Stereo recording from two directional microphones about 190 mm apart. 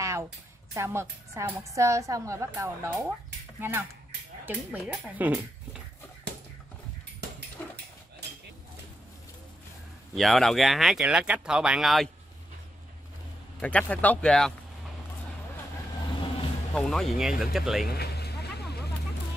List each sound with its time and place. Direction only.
0.0 s a sound: 15° right (ahead or behind)
0.7 s a woman's voice: 15° right (ahead or behind)
10.1 s speech: centre (ahead or behind)
13.6 s speech: 5° left (ahead or behind)
16.7 s speech: centre (ahead or behind)
17.9 s vehicle: 60° left (ahead or behind)